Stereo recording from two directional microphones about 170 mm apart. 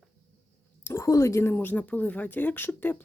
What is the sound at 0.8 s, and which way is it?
Speech, 15° left (ahead or behind).